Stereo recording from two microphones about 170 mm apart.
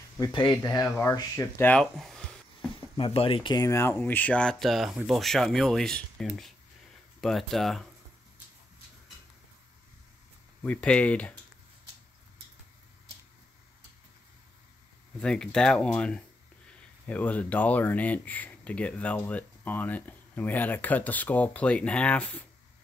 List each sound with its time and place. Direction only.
0.2 s speech: 25° left (ahead or behind); by 2.2 s 5° left (ahead or behind)
3.0 s speech: 35° left (ahead or behind); by 7.8 s centre (ahead or behind)
10.6 s speech: 5° left (ahead or behind)
15.1 s speech: 5° left (ahead or behind)